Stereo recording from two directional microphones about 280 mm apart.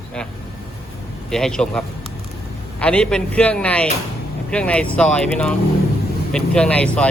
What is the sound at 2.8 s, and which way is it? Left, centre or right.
Speech, centre.